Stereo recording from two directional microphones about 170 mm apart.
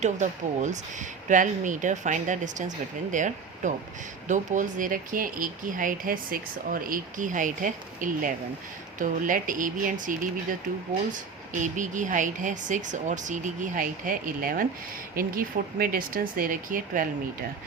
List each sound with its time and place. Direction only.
0.0 s speech: 45° right (ahead or behind)